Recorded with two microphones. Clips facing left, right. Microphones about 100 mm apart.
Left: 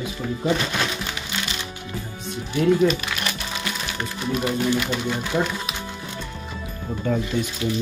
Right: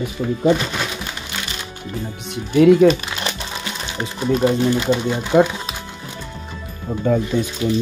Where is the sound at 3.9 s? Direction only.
25° right (ahead or behind).